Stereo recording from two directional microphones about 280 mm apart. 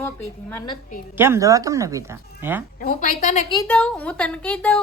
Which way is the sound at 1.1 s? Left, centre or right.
Centre.